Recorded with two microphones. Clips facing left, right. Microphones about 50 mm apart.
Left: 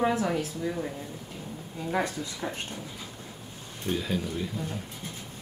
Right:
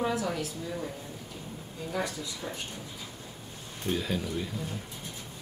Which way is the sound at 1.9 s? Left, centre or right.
Left.